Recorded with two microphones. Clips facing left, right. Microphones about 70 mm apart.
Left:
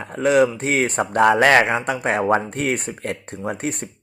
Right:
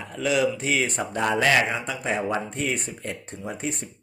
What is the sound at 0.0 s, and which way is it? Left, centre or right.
Speech, left.